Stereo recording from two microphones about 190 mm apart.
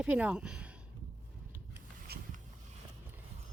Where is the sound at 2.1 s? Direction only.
55° right (ahead or behind).